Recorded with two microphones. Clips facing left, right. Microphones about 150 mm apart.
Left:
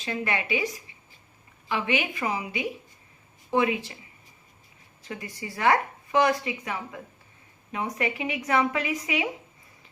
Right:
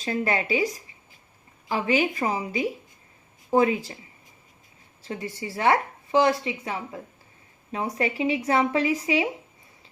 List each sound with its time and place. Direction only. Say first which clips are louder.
0.0 s speech: right 4 dB; 35° right (ahead or behind)
5.0 s speech: right 4 dB; 30° right (ahead or behind)